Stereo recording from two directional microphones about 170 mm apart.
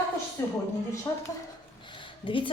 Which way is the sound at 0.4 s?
20° left (ahead or behind).